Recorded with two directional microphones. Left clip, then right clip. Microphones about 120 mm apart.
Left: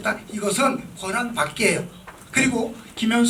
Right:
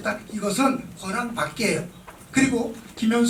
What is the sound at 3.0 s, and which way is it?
Speech, 35° left (ahead or behind).